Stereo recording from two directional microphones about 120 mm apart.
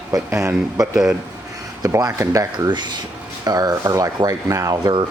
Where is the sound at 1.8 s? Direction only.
30° right (ahead or behind).